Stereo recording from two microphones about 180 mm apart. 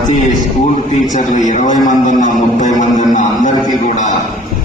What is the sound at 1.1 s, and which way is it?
A man's voice, 45° left (ahead or behind).